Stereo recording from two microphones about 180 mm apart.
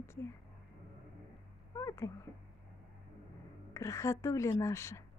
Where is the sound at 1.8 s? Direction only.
20° left (ahead or behind).